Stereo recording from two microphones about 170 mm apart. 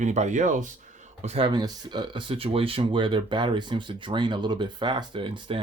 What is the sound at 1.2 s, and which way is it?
Speech, 35° right (ahead or behind).